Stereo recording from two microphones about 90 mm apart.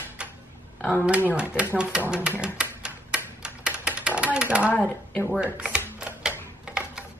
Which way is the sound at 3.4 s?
10° right (ahead or behind).